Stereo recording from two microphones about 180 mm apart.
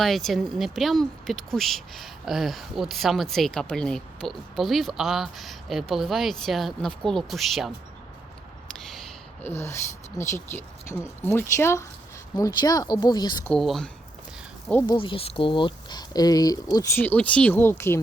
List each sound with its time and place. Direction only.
0.0 s speech: centre (ahead or behind)
9.4 s speech: 15° left (ahead or behind)
13.4 s speech: 5° left (ahead or behind)
14.8 s speech: 30° left (ahead or behind)